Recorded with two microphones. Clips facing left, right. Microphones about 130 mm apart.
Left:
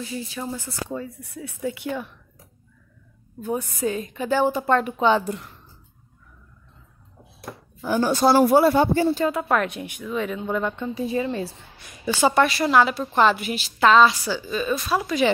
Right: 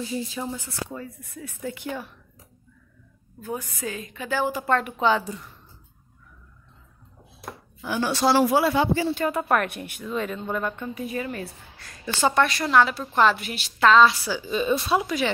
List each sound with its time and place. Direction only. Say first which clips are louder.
0.0 s speech: right 2 dB; 25° right (ahead or behind)
0.8 s a woman's voice: left 5 dB; 30° left (ahead or behind)
3.3 s a woman's voice: left 5 dB; 25° left (ahead or behind)
5.2 s a woman's voice: left 5 dB; 65° left (ahead or behind)
7.8 s speech: left 4 dB; 40° left (ahead or behind)
9.2 s a woman's voice: left 1 dB; centre (ahead or behind)
9.7 s a woman's voice: left 2 dB; 15° left (ahead or behind)
10.6 s a woman's voice: left 4 dB; 25° left (ahead or behind)
11.9 s a woman's voice: left 3 dB; 15° left (ahead or behind)
14.3 s speech: right 1 dB; 20° right (ahead or behind)